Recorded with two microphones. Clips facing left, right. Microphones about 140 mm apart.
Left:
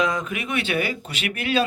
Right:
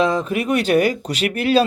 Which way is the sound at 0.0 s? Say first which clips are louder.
Right 6 dB; 30° right (ahead or behind).